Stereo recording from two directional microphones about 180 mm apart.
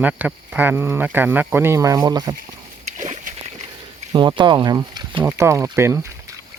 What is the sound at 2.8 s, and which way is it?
Splash, 40° right (ahead or behind).